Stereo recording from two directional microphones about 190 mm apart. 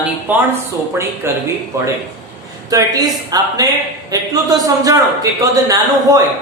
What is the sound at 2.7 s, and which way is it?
A man's voice, 20° right (ahead or behind).